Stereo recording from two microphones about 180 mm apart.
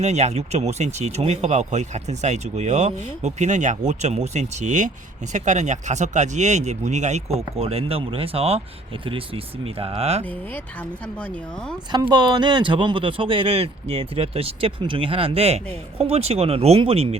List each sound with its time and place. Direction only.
0.0 s speech: 40° right (ahead or behind)
10.2 s speech: 10° left (ahead or behind)
12.1 s speech: 25° right (ahead or behind)